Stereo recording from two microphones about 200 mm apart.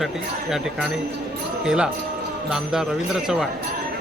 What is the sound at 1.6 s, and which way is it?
Speech, 5° right (ahead or behind).